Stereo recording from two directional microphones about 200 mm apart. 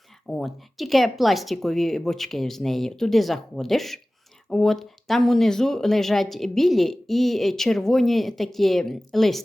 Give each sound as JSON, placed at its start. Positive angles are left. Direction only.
{"t": 0.3, "sound": "speech", "side_deg": 0}